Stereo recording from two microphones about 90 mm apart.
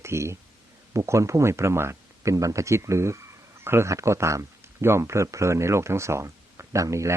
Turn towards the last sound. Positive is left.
turn(degrees=-35)  # may be behind; listen again after turning